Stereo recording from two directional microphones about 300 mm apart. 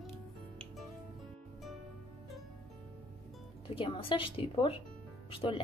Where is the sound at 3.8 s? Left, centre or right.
Centre.